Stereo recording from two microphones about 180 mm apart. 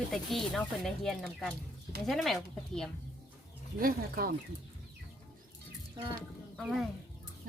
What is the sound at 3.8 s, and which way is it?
Speech, 55° right (ahead or behind).